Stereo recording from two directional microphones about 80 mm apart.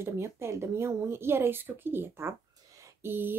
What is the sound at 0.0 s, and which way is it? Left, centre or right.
Speech, right.